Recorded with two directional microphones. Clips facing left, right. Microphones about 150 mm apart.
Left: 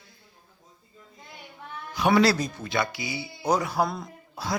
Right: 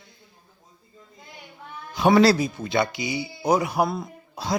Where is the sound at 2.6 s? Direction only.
25° right (ahead or behind); by 4.1 s 5° right (ahead or behind).